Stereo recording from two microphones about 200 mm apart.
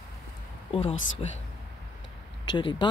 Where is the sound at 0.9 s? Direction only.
70° left (ahead or behind).